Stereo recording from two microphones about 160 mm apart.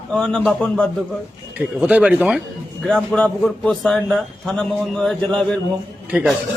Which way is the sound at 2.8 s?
5° left (ahead or behind).